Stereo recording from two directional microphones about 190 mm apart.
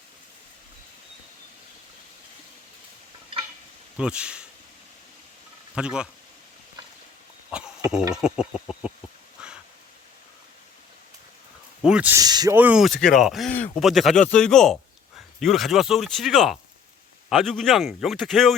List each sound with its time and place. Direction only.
3.9 s speech: 5° right (ahead or behind)
5.7 s speech: 5° right (ahead or behind)
7.5 s speech: 5° right (ahead or behind)
9.4 s a sound: 5° right (ahead or behind)
11.8 s speech: 5° right (ahead or behind)
12.2 s speech: 20° right (ahead or behind)
12.5 s speech: 5° right (ahead or behind)